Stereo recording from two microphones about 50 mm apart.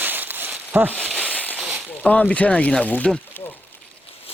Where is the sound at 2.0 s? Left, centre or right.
Centre.